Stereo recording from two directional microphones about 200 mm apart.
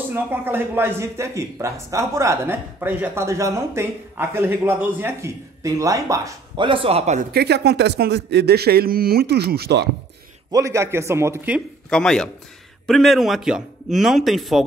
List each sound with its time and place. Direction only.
0.1 s speech: 10° right (ahead or behind); by 7.2 s 35° right (ahead or behind)
7.3 s speech: 55° right (ahead or behind)
10.5 s speech: 15° right (ahead or behind)
11.9 s speech: 5° left (ahead or behind)